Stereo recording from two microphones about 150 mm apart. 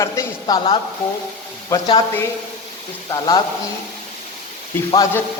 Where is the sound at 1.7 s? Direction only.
25° left (ahead or behind).